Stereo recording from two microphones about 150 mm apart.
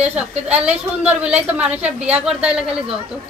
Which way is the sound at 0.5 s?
10° right (ahead or behind).